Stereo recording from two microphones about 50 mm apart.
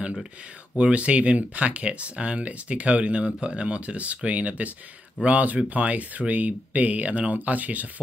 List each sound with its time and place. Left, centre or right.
0.0 s speech: centre
0.7 s speech: right